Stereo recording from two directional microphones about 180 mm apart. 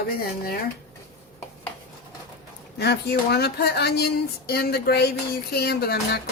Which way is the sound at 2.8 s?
65° left (ahead or behind).